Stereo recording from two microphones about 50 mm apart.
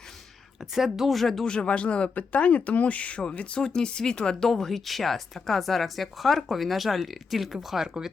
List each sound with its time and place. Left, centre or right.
0.6 s a woman's voice: centre
1.5 s speech: centre
4.4 s a woman's voice: centre